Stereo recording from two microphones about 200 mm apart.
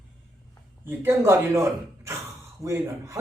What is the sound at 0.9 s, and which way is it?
Speech, 10° right (ahead or behind).